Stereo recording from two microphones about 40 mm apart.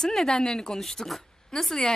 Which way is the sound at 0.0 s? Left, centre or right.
Centre.